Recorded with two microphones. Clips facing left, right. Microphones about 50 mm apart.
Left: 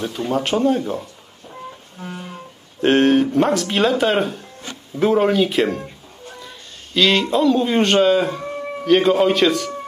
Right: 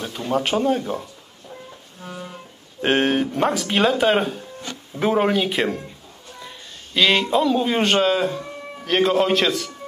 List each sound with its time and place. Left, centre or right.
0.3 s speech: centre
2.0 s music: left
2.8 s speech: centre